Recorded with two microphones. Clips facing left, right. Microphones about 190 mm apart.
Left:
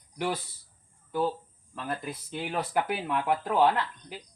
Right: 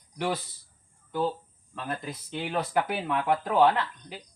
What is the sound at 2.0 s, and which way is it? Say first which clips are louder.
Speech: right 1 dB; 5° left (ahead or behind).